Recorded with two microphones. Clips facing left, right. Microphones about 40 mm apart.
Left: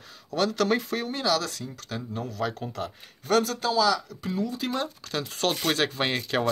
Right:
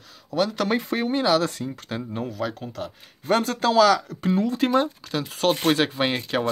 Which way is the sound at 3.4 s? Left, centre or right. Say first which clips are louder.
Right 2 dB; right.